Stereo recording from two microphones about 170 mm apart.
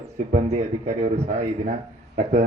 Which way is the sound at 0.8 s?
45° right (ahead or behind).